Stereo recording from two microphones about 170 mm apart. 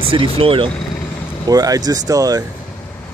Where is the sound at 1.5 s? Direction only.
20° right (ahead or behind).